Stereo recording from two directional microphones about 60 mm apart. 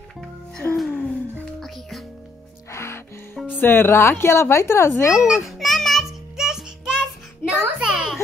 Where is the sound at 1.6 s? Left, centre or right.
Centre.